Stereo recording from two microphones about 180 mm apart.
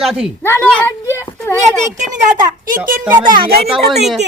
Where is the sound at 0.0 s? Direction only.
Centre (ahead or behind).